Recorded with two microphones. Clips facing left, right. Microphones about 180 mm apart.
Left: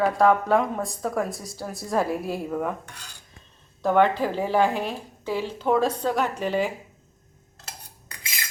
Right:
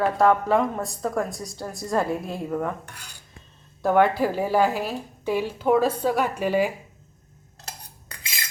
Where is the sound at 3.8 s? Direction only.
10° right (ahead or behind).